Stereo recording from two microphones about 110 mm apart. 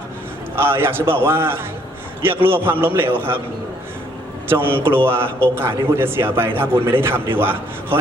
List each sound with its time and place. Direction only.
0.5 s a man's voice: 20° right (ahead or behind)
4.4 s a man's voice: 20° right (ahead or behind)